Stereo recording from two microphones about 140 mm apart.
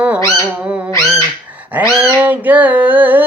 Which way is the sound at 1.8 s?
10° right (ahead or behind).